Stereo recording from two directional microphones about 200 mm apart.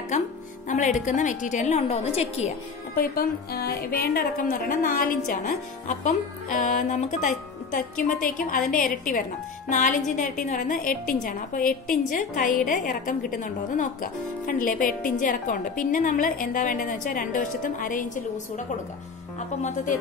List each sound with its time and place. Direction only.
0.1 s music: 35° left (ahead or behind)
0.7 s a woman's voice: 40° left (ahead or behind)
3.0 s a woman's voice: 50° left (ahead or behind)
19.6 s a woman's voice: 40° left (ahead or behind)